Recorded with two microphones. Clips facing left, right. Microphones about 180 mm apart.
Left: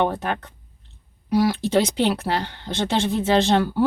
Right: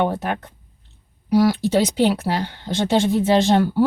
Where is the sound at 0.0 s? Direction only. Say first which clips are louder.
Right 1 dB; 10° right (ahead or behind).